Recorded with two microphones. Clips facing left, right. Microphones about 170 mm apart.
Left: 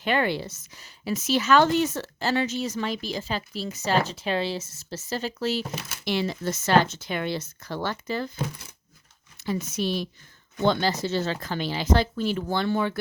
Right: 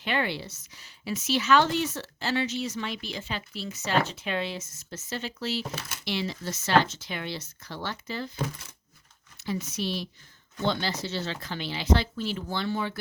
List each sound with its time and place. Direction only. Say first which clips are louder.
0.0 s speech: left 5 dB; 45° left (ahead or behind)
9.4 s speech: left 4 dB; 50° left (ahead or behind)